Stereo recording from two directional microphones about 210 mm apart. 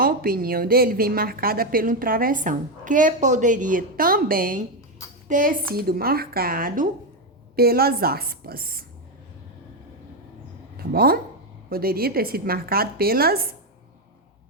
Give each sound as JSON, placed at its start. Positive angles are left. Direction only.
{"t": 0.0, "sound": "a woman's voice", "side_deg": -45}
{"t": 10.8, "sound": "a woman's voice", "side_deg": -45}